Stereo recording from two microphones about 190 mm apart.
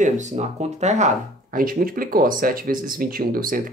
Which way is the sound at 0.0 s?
35° right (ahead or behind).